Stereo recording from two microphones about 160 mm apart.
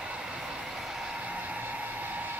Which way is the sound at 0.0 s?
5° right (ahead or behind).